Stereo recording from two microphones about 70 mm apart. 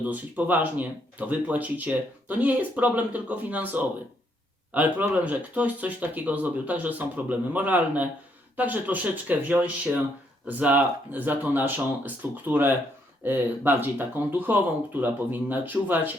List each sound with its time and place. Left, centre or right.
0.0 s speech: right